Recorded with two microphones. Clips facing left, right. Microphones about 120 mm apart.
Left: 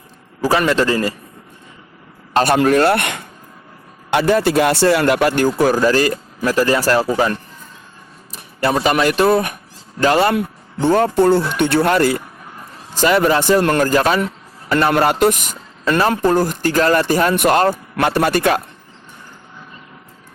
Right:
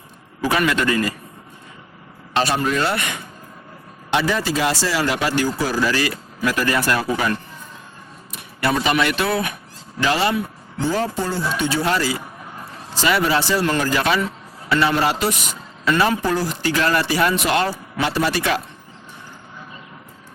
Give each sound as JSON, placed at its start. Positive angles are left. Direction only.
{"t": 0.4, "sound": "a man's voice", "side_deg": 35}
{"t": 2.3, "sound": "speech", "side_deg": 55}
{"t": 4.1, "sound": "speech", "side_deg": 50}